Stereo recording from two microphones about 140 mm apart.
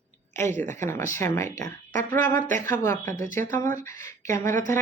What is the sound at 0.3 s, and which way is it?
Speech, 15° left (ahead or behind).